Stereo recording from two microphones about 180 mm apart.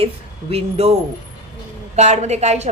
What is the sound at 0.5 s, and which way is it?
Speech, 35° right (ahead or behind).